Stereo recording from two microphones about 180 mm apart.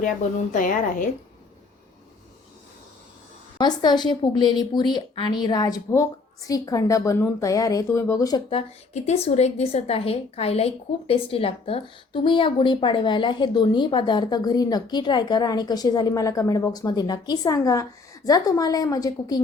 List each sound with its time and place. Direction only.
0.5 s a woman's voice: 45° left (ahead or behind)
3.6 s speech: 25° left (ahead or behind)